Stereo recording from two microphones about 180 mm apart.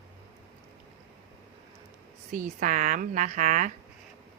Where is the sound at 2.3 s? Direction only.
45° right (ahead or behind).